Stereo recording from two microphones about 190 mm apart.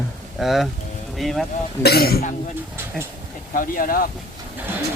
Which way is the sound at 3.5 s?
45° left (ahead or behind).